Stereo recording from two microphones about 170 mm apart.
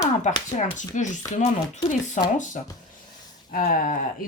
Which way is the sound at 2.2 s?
45° left (ahead or behind).